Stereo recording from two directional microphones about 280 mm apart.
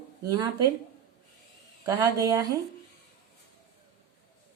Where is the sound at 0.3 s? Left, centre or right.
Centre.